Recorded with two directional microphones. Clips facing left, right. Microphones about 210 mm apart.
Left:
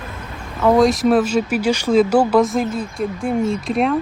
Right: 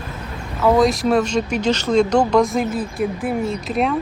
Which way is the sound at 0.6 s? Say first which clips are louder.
Left 2 dB; centre (ahead or behind).